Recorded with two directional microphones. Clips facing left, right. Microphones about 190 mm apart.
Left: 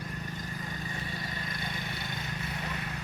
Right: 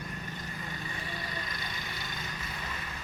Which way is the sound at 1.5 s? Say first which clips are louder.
Left 3 dB; 55° left (ahead or behind).